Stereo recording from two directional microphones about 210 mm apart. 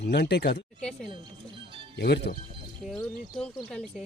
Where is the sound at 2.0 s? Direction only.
50° left (ahead or behind).